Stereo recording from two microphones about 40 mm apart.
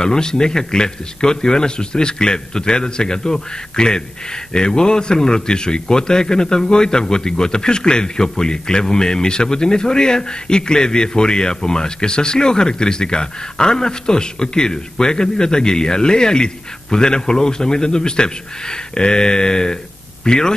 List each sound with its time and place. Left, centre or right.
0.0 s a man's voice: centre